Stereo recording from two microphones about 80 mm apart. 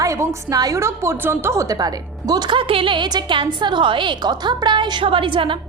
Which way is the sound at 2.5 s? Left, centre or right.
Right.